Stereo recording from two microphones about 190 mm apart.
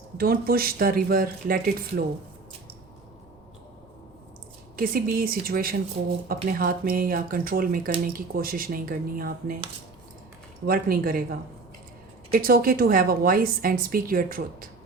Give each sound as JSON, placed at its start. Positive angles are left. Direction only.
{"t": 0.2, "sound": "a woman's voice", "side_deg": -50}
{"t": 4.8, "sound": "a woman's voice", "side_deg": -50}
{"t": 10.7, "sound": "a woman's voice", "side_deg": -50}